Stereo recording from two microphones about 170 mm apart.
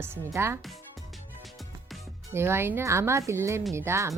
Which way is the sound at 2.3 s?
15° right (ahead or behind).